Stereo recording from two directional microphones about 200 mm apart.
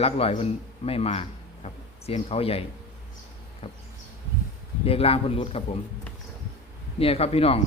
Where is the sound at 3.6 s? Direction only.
30° left (ahead or behind).